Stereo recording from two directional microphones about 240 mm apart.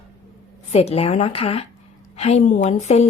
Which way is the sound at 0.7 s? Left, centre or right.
Left.